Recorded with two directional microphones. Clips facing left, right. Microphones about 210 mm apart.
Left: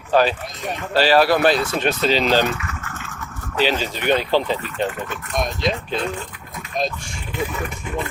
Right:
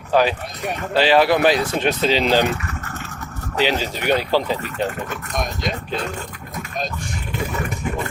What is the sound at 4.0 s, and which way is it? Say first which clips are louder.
Speech: left 1 dB; 40° right (ahead or behind).